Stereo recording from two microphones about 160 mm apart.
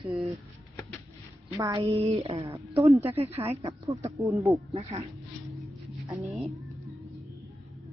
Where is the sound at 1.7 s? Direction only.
35° right (ahead or behind).